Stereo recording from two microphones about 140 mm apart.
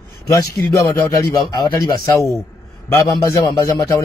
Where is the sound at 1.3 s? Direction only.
25° left (ahead or behind).